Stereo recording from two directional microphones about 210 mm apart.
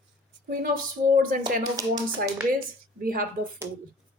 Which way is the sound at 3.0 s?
45° right (ahead or behind).